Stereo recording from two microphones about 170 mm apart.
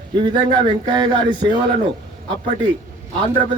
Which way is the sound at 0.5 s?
25° right (ahead or behind).